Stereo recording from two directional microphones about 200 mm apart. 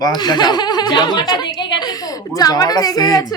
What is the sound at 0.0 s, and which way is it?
A child's voice, 20° left (ahead or behind).